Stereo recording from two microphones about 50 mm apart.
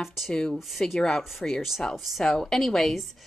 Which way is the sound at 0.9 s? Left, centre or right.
Centre.